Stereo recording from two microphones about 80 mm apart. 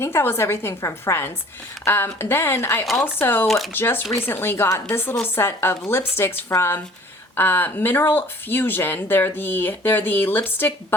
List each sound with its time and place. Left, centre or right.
0.0 s speech: left
3.4 s speech: centre
3.7 s speech: left